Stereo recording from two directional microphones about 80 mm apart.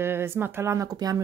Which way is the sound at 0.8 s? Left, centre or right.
Right.